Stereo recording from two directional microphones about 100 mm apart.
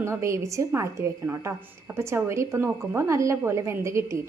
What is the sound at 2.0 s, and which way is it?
A woman's voice, 25° right (ahead or behind).